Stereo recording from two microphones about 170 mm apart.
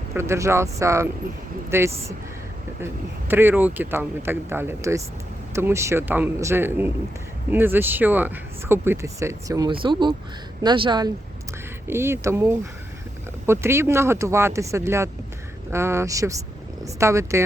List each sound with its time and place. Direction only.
0.1 s speech: 15° right (ahead or behind)
11.9 s speech: 15° right (ahead or behind)